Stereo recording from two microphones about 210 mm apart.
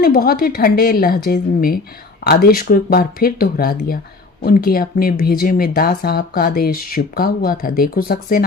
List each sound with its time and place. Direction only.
0.0 s speech: 45° left (ahead or behind)